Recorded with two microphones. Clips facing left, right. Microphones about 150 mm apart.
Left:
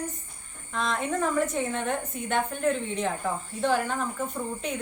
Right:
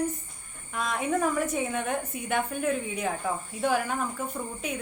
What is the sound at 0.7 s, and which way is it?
A woman's voice, 10° right (ahead or behind).